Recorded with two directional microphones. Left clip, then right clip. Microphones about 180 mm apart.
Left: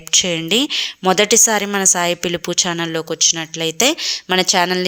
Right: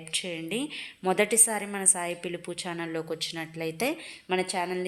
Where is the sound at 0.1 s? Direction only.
35° left (ahead or behind).